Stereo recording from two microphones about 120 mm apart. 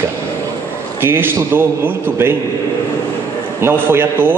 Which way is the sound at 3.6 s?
20° right (ahead or behind).